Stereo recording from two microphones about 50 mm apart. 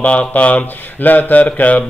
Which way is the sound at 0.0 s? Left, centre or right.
Left.